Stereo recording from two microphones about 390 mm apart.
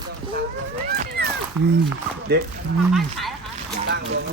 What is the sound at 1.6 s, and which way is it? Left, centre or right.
Speech, centre.